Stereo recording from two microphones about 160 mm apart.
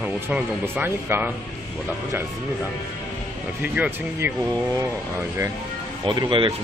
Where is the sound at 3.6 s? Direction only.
10° right (ahead or behind).